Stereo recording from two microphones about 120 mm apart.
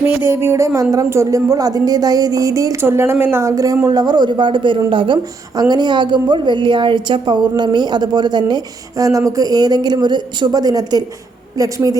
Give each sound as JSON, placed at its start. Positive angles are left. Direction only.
{"t": 0.3, "sound": "a woman's voice", "side_deg": -20}